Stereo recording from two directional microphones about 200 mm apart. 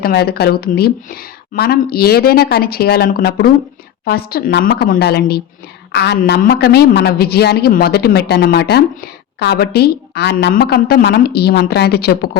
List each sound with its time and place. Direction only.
0.0 s a woman's voice: 50° left (ahead or behind)